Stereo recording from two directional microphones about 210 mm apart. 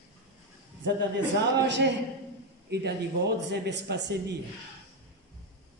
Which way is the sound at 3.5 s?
55° right (ahead or behind).